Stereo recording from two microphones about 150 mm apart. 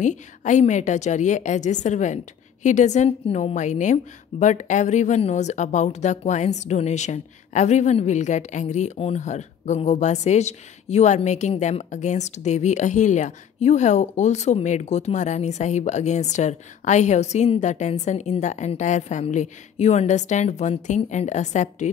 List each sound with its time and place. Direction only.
0.0 s a woman's voice: 55° left (ahead or behind)